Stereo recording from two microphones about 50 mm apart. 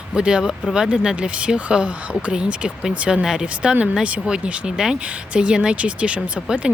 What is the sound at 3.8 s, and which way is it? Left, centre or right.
Speech, right.